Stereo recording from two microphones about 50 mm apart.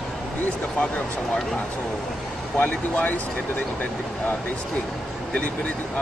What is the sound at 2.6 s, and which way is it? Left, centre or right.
Speech, left.